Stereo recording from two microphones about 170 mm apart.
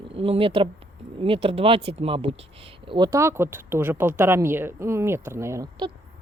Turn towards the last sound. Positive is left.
turn(degrees=-15)  # may be behind; listen again after turning